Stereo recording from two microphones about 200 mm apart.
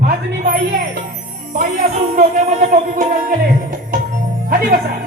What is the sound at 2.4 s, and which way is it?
Music, 35° right (ahead or behind).